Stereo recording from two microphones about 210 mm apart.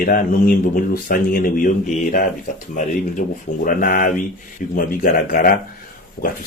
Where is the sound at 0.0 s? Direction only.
45° left (ahead or behind).